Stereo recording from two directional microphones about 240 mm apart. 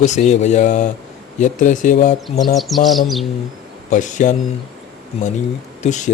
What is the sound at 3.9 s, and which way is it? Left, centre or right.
Speech, left.